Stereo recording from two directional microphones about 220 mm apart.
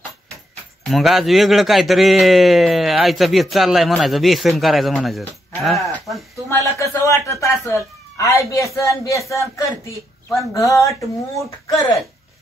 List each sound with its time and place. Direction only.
0.8 s a man's voice: centre (ahead or behind)
6.5 s speech: 15° left (ahead or behind)